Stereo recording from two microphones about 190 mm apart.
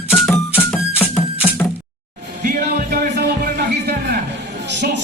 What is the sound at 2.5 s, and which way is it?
Music, 55° right (ahead or behind).